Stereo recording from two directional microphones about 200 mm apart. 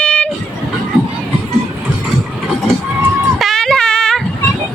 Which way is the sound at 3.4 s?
Centre (ahead or behind).